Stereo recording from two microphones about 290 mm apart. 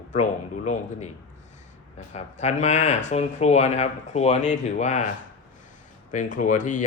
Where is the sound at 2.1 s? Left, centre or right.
Left.